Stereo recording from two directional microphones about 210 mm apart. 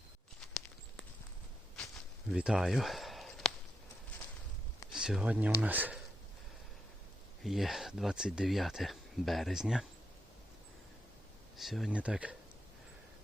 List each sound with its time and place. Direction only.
0.3 s walk: 5° left (ahead or behind)
2.3 s a sound: 5° right (ahead or behind)
4.9 s speech: 5° right (ahead or behind)
7.4 s speech: centre (ahead or behind)
11.5 s speech: centre (ahead or behind)